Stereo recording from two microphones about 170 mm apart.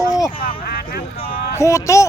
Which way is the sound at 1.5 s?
15° left (ahead or behind).